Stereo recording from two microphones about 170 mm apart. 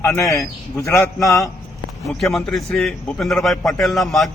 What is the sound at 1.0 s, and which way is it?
A man's voice, centre (ahead or behind).